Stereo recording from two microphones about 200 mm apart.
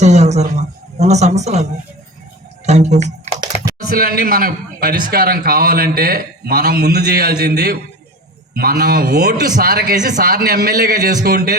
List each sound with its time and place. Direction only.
0.0 s a sound: 35° right (ahead or behind)
0.9 s a man's voice: 35° right (ahead or behind)
2.6 s a man's voice: 35° right (ahead or behind)
3.8 s a man's voice: 50° right (ahead or behind)